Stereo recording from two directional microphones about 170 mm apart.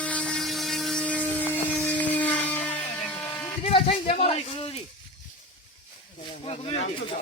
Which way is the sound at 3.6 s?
35° left (ahead or behind).